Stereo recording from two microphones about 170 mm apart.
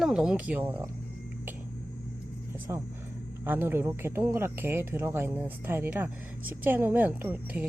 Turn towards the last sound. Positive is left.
turn(degrees=-10)  # may be behind; listen again after turning